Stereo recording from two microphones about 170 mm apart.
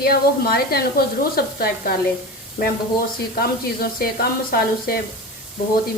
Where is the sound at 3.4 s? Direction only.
60° left (ahead or behind).